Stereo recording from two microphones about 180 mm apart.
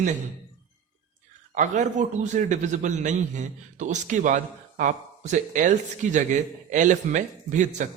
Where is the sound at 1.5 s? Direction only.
40° right (ahead or behind).